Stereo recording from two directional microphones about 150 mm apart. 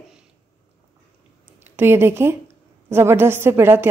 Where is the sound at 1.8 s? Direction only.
15° right (ahead or behind).